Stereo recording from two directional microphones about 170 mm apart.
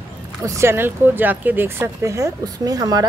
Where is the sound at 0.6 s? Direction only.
15° right (ahead or behind).